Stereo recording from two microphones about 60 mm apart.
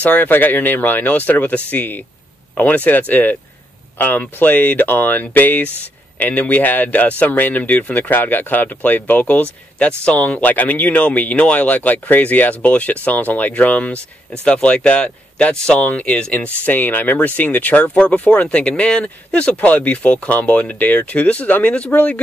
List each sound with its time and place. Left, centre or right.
0.0 s speech: left
16.6 s speech: left